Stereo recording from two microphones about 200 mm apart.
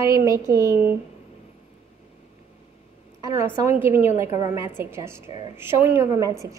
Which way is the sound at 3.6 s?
10° right (ahead or behind).